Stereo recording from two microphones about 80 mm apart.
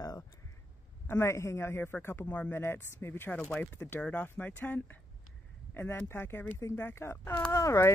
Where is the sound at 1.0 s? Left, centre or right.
Left.